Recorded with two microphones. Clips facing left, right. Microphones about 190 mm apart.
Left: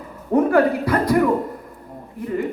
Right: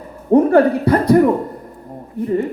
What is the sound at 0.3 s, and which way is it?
Speech, 30° right (ahead or behind).